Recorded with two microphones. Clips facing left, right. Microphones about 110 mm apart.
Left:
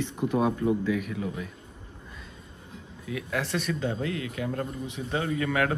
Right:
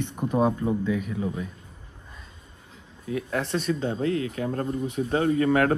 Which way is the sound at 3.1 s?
35° right (ahead or behind).